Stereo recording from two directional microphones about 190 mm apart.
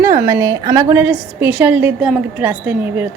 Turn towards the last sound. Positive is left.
turn(degrees=-10)  # may be behind; listen again after turning